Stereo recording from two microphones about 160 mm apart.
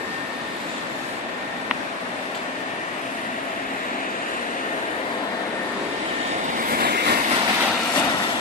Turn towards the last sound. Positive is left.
turn(degrees=-80)